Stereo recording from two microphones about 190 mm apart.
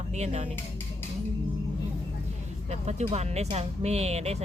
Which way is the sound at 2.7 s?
35° right (ahead or behind).